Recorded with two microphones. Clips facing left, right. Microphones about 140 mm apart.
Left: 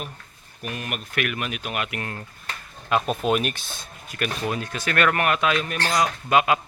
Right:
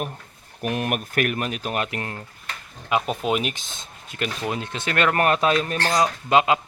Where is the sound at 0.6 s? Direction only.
60° right (ahead or behind); by 2.1 s 30° right (ahead or behind).